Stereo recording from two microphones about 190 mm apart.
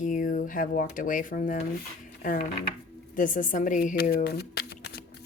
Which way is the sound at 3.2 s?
45° left (ahead or behind).